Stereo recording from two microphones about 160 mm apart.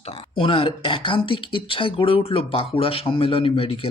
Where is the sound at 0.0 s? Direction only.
40° left (ahead or behind).